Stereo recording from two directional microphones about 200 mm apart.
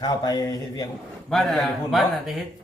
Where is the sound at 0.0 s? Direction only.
20° left (ahead or behind).